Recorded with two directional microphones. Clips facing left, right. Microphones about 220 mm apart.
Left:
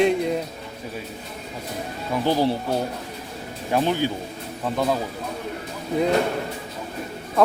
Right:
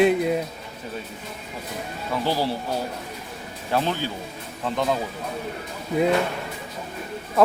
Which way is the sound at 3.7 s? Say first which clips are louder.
Left 3 dB; 15° left (ahead or behind).